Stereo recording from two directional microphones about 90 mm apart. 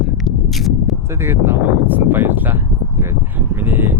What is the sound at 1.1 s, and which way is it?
Speech, 25° right (ahead or behind).